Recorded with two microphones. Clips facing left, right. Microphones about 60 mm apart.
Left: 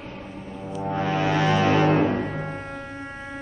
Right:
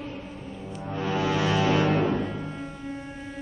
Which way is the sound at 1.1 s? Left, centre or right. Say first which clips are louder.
Left 2 dB; left.